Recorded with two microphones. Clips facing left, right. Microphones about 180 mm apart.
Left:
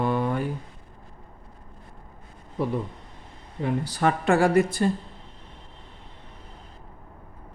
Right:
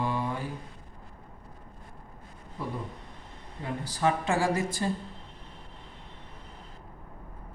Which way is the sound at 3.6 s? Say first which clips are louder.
Left 5 dB; 70° left (ahead or behind).